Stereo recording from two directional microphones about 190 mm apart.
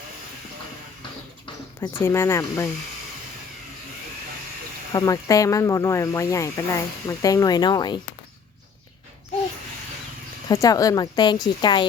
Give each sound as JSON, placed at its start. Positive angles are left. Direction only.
{"t": 2.0, "sound": "speech", "side_deg": 15}
{"t": 4.9, "sound": "speech", "side_deg": 20}
{"t": 10.5, "sound": "a woman's voice", "side_deg": 20}